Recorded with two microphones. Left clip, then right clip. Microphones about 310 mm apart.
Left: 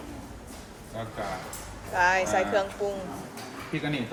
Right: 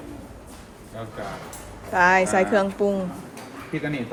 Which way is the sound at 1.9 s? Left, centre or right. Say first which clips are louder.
Right 6 dB; centre.